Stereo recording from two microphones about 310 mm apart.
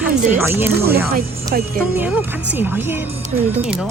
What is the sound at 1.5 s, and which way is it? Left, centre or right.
Speech, right.